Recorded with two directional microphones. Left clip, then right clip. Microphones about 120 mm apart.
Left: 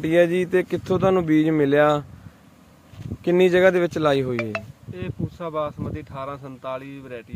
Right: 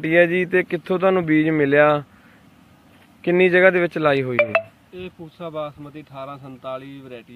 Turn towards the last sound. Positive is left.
turn(degrees=25)  # may be behind; listen again after turning